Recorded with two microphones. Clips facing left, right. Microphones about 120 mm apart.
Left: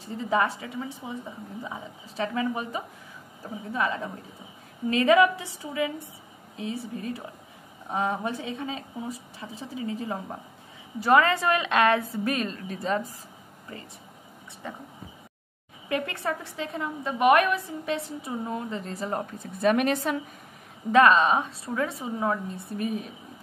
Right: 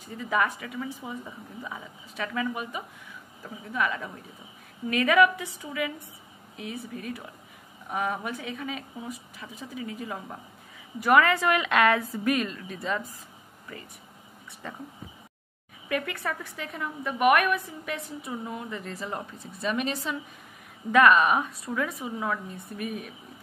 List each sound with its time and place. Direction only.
0.2 s a woman's voice: 30° left (ahead or behind)
14.6 s speech: 15° left (ahead or behind)
15.9 s a woman's voice: 25° left (ahead or behind)
19.4 s speech: 55° left (ahead or behind)
20.9 s a woman's voice: 30° left (ahead or behind)